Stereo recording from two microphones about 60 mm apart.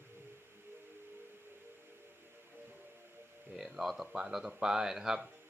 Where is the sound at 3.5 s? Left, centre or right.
Centre.